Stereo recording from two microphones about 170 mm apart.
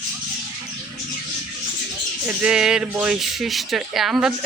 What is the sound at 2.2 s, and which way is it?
Speech, 5° right (ahead or behind).